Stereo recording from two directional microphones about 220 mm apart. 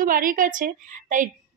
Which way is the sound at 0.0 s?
40° right (ahead or behind).